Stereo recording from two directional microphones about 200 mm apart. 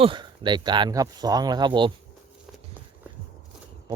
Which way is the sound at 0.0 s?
25° right (ahead or behind).